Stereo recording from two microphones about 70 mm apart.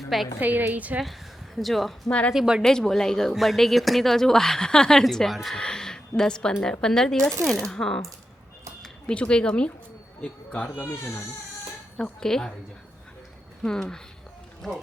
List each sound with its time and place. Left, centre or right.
0.3 s a woman's voice: right
1.5 s speech: centre
2.0 s speech: centre
2.3 s speech: centre
2.6 s a man's voice: centre
12.2 s speech: centre
13.6 s speech: centre